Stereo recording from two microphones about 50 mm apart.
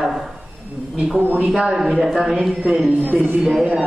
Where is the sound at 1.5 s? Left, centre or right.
Centre.